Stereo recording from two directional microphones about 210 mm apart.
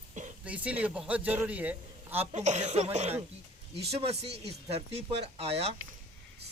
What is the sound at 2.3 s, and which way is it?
Speech, 35° right (ahead or behind).